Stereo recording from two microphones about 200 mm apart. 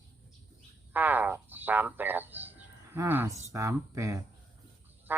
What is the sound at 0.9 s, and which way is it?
Speech, 10° right (ahead or behind).